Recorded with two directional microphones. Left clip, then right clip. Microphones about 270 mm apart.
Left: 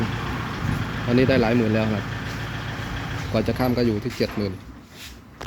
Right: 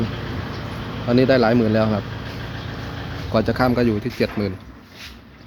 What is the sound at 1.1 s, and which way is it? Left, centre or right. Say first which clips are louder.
Speech: right 4 dB; centre.